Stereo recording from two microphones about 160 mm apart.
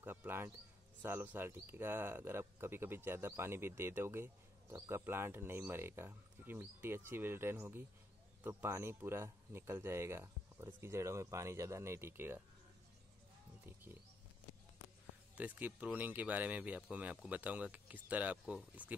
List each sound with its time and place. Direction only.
0.0 s a sound: 10° right (ahead or behind)
1.0 s speech: 15° right (ahead or behind)
15.3 s speech: 10° right (ahead or behind)